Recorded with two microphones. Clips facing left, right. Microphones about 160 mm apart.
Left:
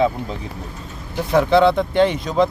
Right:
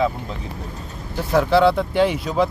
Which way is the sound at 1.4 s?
5° right (ahead or behind).